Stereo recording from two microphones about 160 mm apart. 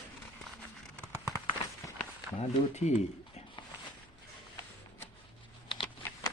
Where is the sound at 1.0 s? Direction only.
15° left (ahead or behind).